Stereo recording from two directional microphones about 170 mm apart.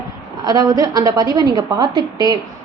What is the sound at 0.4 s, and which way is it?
A woman's voice, 25° right (ahead or behind).